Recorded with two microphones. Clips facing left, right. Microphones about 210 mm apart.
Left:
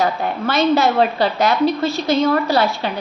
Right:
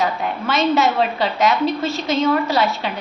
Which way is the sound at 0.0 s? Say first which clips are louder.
Left 2 dB; 35° left (ahead or behind).